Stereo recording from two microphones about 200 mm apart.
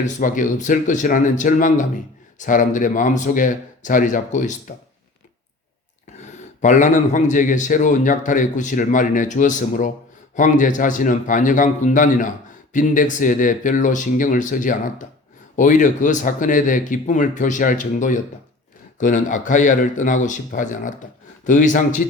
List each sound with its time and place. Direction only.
0.0 s a man's voice: 40° left (ahead or behind)
6.6 s a man's voice: 40° left (ahead or behind)